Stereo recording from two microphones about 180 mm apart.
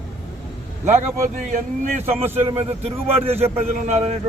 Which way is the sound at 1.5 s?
45° right (ahead or behind).